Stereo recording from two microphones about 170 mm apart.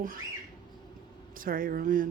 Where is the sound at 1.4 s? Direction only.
55° right (ahead or behind).